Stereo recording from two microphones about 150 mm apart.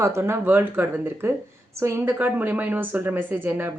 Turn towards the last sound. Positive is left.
turn(degrees=-15)  # may be behind; listen again after turning